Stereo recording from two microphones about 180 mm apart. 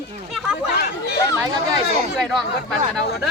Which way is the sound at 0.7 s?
65° left (ahead or behind).